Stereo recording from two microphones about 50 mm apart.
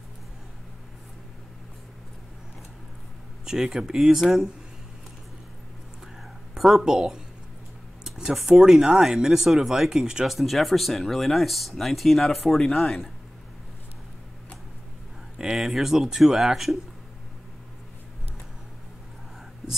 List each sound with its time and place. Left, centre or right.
3.4 s speech: centre
6.8 s speech: centre
8.0 s a sound: centre
8.5 s speech: centre
10.3 s speech: centre
15.3 s speech: centre